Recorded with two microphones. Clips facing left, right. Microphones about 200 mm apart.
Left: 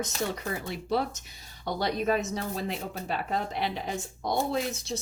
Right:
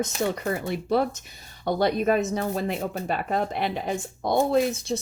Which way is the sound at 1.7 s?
55° right (ahead or behind).